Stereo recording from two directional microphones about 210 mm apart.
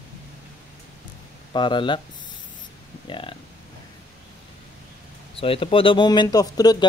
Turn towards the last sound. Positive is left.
turn(degrees=20)  # may be behind; listen again after turning